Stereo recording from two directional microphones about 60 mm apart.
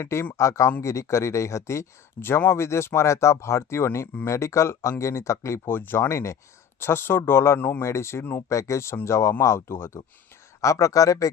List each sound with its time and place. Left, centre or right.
0.0 s speech: left
5.6 s speech: left
6.1 s speech: left
6.7 s speech: left
10.6 s speech: left